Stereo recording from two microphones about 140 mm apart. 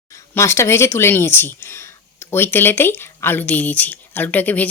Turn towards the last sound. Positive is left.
turn(degrees=10)  # may be behind; listen again after turning